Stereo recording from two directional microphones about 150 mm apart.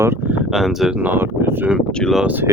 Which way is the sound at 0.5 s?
Centre (ahead or behind).